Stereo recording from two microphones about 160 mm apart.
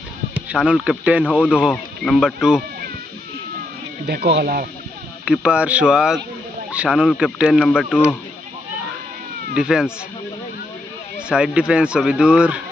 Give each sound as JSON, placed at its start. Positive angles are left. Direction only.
{"t": 0.3, "sound": "speech", "side_deg": -5}
{"t": 4.0, "sound": "speech", "side_deg": -85}
{"t": 5.2, "sound": "speech", "side_deg": -5}
{"t": 9.6, "sound": "speech", "side_deg": -5}
{"t": 11.3, "sound": "speech", "side_deg": -5}